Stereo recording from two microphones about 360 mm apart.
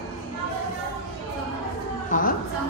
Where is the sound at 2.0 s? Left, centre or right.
Left.